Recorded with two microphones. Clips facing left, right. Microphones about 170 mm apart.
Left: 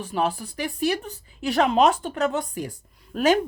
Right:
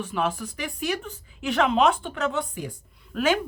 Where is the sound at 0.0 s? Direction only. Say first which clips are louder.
Left 2 dB; 35° left (ahead or behind).